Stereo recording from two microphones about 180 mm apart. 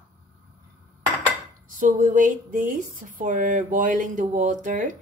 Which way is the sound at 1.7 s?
45° right (ahead or behind).